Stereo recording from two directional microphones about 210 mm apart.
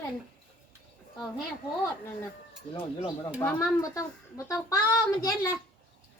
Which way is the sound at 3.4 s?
15° left (ahead or behind).